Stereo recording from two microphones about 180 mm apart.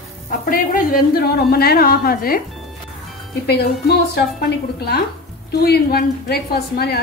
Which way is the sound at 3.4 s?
60° left (ahead or behind).